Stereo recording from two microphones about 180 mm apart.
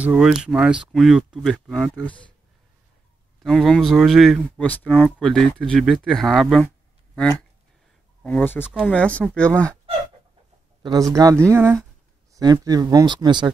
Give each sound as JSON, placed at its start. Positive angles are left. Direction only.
{"t": 0.0, "sound": "speech", "side_deg": -5}
{"t": 3.4, "sound": "speech", "side_deg": 0}
{"t": 8.2, "sound": "speech", "side_deg": 5}
{"t": 10.8, "sound": "speech", "side_deg": -20}